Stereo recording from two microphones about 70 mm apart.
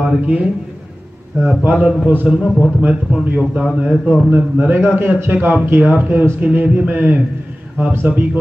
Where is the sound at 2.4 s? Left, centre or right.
Centre.